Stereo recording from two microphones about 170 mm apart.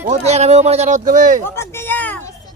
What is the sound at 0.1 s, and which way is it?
Speech, 40° right (ahead or behind).